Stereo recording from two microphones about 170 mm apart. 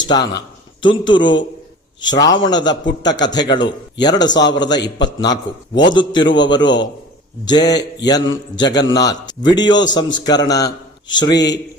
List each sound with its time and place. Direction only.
0.1 s a man's voice: 25° left (ahead or behind)